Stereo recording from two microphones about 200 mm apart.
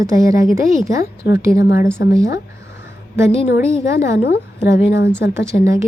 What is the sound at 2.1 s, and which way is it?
Speech, 15° right (ahead or behind).